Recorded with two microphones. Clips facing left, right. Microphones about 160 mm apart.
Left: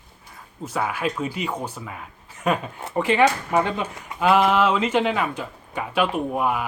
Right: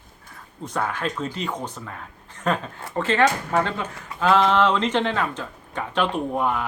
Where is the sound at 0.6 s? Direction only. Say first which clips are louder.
Left 1 dB; 5° left (ahead or behind).